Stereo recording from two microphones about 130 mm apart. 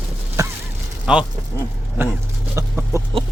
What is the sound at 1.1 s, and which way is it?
Speech, 5° right (ahead or behind).